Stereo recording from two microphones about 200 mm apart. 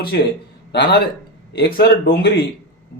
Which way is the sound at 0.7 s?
55° left (ahead or behind).